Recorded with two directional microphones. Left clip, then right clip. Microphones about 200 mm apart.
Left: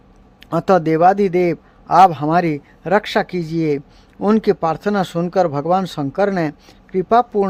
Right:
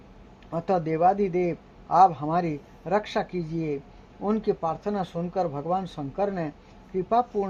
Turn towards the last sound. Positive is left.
turn(degrees=30)  # may be behind; listen again after turning